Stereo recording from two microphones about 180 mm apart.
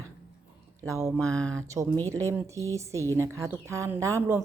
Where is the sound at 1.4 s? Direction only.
5° left (ahead or behind).